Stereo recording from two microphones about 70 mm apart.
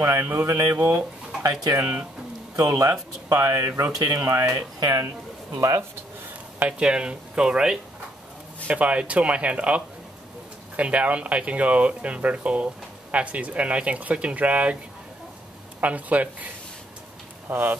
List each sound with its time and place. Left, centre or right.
0.0 s speech: right
0.7 s speech: right
1.4 s speech: right
2.8 s speech: right
4.0 s speech: right
4.3 s speech: right
4.7 s speech: right
6.6 s speech: centre
15.8 s speech: right
17.5 s speech: right